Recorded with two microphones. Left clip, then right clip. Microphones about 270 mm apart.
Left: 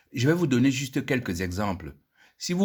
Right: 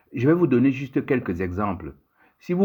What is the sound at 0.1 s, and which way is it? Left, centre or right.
Speech, left.